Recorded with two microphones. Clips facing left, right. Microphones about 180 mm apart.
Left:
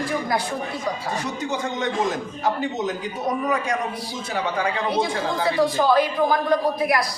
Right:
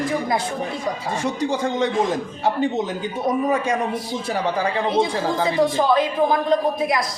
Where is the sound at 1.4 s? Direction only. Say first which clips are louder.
Right 5 dB; 30° right (ahead or behind).